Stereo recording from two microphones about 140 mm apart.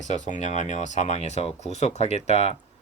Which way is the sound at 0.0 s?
60° left (ahead or behind).